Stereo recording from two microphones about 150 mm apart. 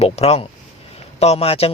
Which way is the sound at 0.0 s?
45° left (ahead or behind).